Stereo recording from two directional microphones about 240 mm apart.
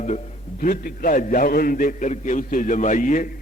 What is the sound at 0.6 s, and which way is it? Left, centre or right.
A man's voice, left.